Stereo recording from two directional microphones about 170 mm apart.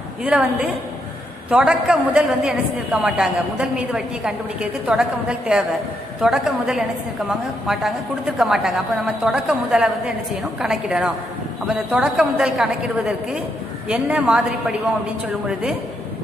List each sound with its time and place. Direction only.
0.2 s a woman's voice: 5° right (ahead or behind)